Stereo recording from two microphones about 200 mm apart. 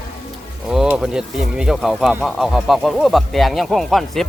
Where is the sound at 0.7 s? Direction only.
5° right (ahead or behind).